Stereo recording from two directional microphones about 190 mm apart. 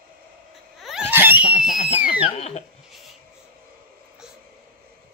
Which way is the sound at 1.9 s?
40° left (ahead or behind).